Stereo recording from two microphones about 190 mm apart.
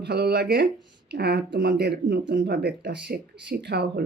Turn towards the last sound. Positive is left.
turn(degrees=-60)  # may be behind; listen again after turning